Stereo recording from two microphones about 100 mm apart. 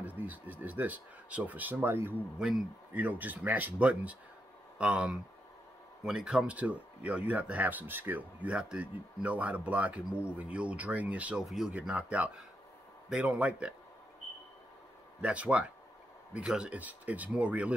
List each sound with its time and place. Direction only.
0.0 s speech: 15° right (ahead or behind)
2.3 s speech: 10° right (ahead or behind)
15.2 s speech: 10° right (ahead or behind)